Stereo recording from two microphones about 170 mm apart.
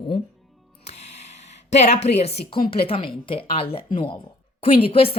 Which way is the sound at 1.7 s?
40° left (ahead or behind).